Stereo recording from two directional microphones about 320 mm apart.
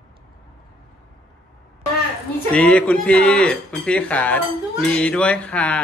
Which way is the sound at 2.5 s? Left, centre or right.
Centre.